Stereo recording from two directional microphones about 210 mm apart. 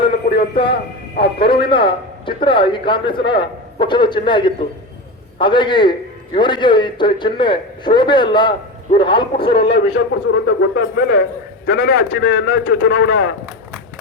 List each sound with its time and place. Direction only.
0.0 s radio: 25° left (ahead or behind)
0.7 s speech: 50° left (ahead or behind)
1.4 s a man's voice: 25° left (ahead or behind)
9.6 s a man's voice: 50° left (ahead or behind)